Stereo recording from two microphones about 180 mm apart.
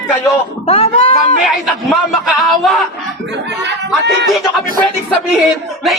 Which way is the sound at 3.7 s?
75° right (ahead or behind).